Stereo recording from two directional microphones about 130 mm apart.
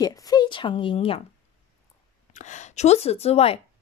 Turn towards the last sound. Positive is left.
turn(degrees=50)  # may be behind; listen again after turning